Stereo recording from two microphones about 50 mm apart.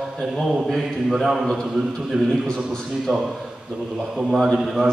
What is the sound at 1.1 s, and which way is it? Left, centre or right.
Speech, centre.